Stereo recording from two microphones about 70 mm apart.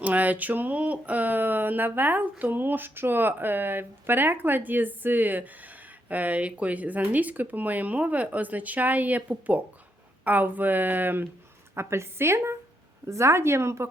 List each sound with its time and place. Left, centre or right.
0.0 s speech: right